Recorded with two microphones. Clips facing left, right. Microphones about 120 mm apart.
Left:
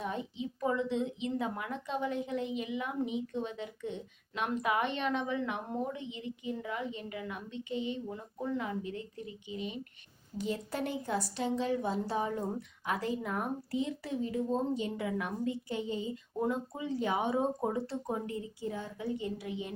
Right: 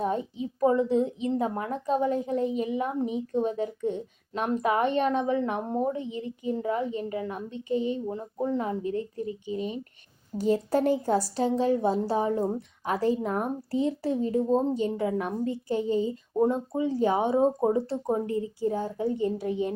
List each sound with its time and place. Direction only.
0.0 s a woman's voice: 35° right (ahead or behind)